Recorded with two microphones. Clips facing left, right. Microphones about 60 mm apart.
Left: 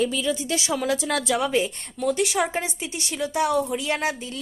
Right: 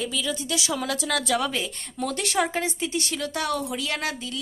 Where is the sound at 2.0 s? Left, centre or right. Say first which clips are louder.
Left 3 dB; centre.